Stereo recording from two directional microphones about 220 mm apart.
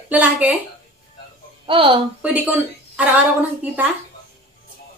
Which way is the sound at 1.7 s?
25° right (ahead or behind).